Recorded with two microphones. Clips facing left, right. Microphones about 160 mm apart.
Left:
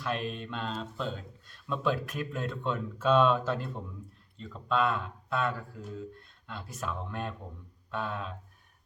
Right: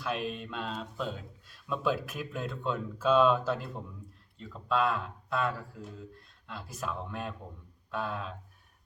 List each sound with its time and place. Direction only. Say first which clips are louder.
0.0 s speech: even; 5° right (ahead or behind)